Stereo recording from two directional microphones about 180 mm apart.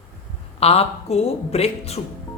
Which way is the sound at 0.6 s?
35° left (ahead or behind).